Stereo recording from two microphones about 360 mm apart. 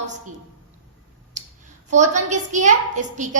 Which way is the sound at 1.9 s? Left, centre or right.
Centre.